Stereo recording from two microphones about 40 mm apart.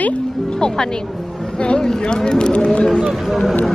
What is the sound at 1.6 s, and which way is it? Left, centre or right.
Speech, left.